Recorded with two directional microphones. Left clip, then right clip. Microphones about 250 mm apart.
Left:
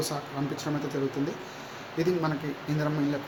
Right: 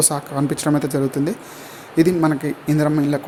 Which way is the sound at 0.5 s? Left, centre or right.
Right.